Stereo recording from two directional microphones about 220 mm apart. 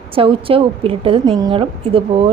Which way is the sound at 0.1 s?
25° right (ahead or behind).